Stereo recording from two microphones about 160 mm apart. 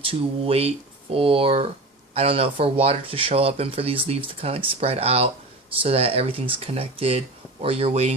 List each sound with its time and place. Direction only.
0.0 s speech: 35° right (ahead or behind)